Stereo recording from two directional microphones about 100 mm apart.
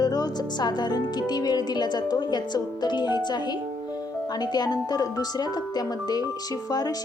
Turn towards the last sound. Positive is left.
turn(degrees=40)  # may be behind; listen again after turning